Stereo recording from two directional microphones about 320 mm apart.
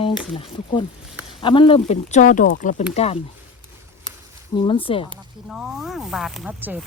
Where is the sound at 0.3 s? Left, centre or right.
Centre.